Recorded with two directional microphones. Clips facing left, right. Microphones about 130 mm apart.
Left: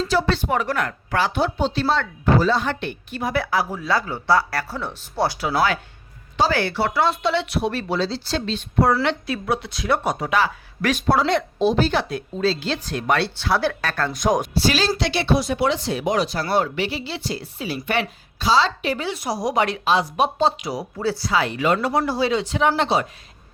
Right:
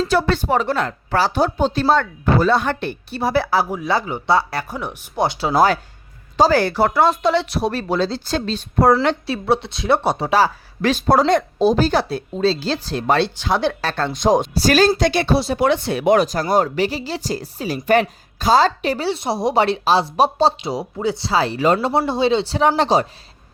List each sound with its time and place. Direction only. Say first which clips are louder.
0.1 s speech: right 1 dB; 55° right (ahead or behind)
0.4 s speech: right 3 dB; 30° right (ahead or behind); by 2.7 s 60° right (ahead or behind)
2.8 s speech: right 4 dB; 35° right (ahead or behind)
3.7 s speech: right 3 dB; 20° right (ahead or behind)
5.5 s speech: right 7 dB; 40° right (ahead or behind)
9.2 s speech: right 5 dB; 30° right (ahead or behind)
14.5 s speech: right 6 dB; 45° right (ahead or behind); by 21.2 s 20° right (ahead or behind)
21.2 s speech: right 4 dB; 35° right (ahead or behind)